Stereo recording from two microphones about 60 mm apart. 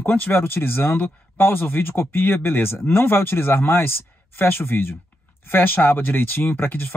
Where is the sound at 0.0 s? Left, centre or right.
Left.